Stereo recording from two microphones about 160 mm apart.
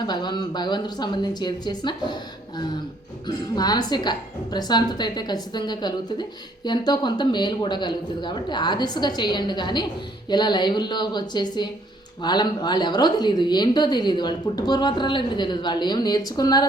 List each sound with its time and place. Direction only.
0.0 s a woman's voice: 25° left (ahead or behind)
3.2 s a woman's voice: 25° left (ahead or behind)